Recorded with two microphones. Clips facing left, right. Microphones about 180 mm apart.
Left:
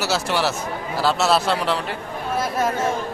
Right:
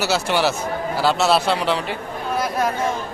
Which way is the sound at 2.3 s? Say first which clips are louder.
Even; centre (ahead or behind).